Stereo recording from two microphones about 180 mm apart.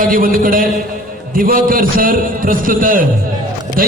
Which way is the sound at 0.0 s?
50° right (ahead or behind).